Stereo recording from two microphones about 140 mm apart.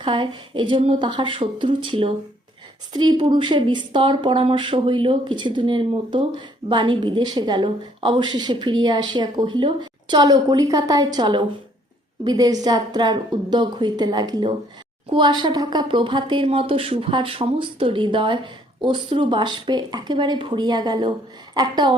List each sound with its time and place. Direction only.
0.0 s speech: 35° right (ahead or behind)